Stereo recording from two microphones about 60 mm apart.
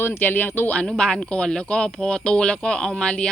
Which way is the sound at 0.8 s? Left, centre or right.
Centre.